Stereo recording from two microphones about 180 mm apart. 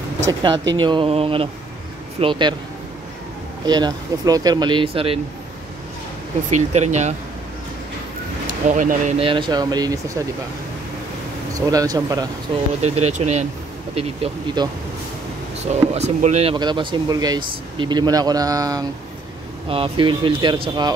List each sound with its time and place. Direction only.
0.3 s speech: 25° right (ahead or behind)
3.6 s speech: 25° right (ahead or behind)
6.5 s speech: 40° right (ahead or behind)
8.6 s speech: 45° right (ahead or behind)
9.2 s speech: 25° right (ahead or behind)
11.7 s speech: 20° right (ahead or behind)
12.8 s speech: 35° right (ahead or behind)
13.9 s speech: 30° right (ahead or behind)
16.5 s speech: 25° right (ahead or behind)